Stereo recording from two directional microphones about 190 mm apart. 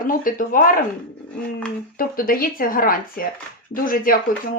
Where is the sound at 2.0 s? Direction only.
50° left (ahead or behind).